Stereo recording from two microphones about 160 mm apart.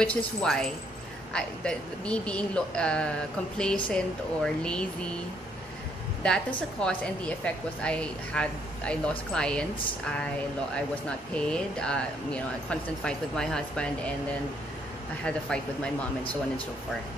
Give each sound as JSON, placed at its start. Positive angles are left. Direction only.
{"t": 0.0, "sound": "a woman's voice", "side_deg": 5}
{"t": 6.8, "sound": "a woman's voice", "side_deg": 5}
{"t": 11.3, "sound": "a woman's voice", "side_deg": 5}
{"t": 15.2, "sound": "a woman's voice", "side_deg": 5}